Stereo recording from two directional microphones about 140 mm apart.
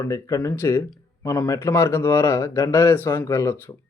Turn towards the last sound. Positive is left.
turn(degrees=20)  # may be behind; listen again after turning